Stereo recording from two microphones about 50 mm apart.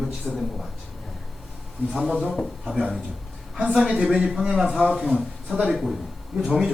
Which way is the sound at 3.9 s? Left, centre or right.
Centre.